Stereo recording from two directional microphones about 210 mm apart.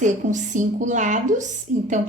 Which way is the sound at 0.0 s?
35° right (ahead or behind).